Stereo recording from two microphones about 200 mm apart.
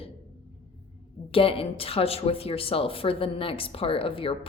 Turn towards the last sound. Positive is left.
turn(degrees=25)  # may be behind; listen again after turning